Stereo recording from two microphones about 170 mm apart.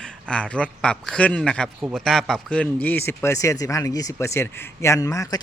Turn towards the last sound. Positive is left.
turn(degrees=20)  # may be behind; listen again after turning